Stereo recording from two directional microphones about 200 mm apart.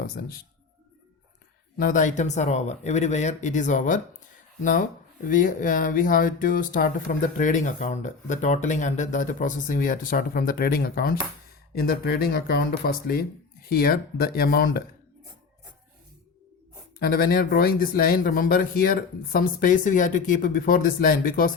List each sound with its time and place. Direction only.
0.2 s speech: 50° left (ahead or behind)
1.8 s speech: 40° left (ahead or behind)
17.0 s speech: 50° left (ahead or behind)